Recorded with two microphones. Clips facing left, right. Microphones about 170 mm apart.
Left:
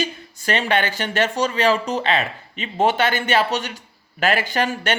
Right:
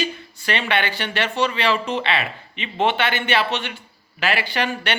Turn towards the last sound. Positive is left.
turn(degrees=45)  # may be behind; listen again after turning